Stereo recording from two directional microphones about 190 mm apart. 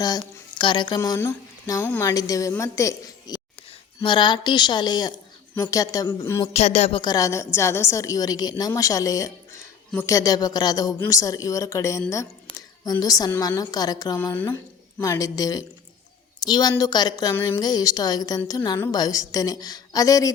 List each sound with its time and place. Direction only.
0.6 s a woman's voice: 25° left (ahead or behind)
6.4 s a sound: 35° left (ahead or behind)
7.0 s a woman's voice: 20° left (ahead or behind)